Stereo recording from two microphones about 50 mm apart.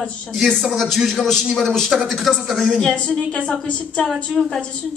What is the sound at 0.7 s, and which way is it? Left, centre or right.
A man's voice, centre.